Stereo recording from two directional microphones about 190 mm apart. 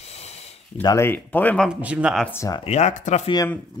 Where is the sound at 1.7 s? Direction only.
5° right (ahead or behind).